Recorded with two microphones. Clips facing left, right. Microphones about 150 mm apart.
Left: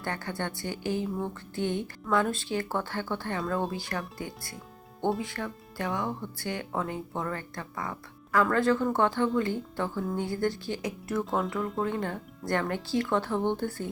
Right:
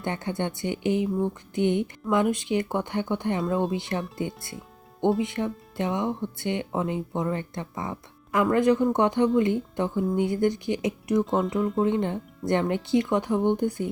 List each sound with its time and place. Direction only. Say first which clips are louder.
0.0 s speech: right 5 dB; 20° right (ahead or behind)